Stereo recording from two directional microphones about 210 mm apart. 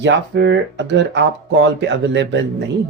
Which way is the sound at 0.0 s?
55° right (ahead or behind).